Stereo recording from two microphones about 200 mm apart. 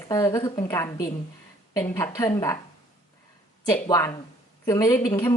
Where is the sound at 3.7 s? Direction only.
15° left (ahead or behind).